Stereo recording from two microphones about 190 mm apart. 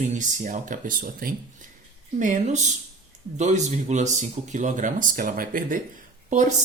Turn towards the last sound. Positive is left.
turn(degrees=-40)  # may be behind; listen again after turning